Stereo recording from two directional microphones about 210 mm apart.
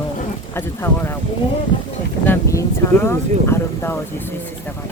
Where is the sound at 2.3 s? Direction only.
15° left (ahead or behind).